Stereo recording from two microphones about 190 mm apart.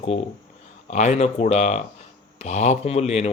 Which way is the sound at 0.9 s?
40° left (ahead or behind).